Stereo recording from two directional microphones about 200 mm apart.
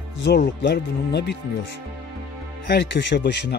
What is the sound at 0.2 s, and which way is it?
Speech, 55° left (ahead or behind).